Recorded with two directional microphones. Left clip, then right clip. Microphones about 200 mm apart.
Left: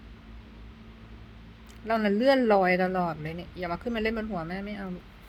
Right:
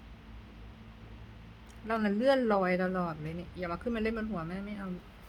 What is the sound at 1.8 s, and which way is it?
Speech, 5° left (ahead or behind).